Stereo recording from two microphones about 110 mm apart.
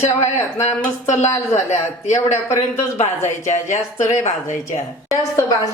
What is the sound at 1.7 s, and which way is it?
Speech, 90° left.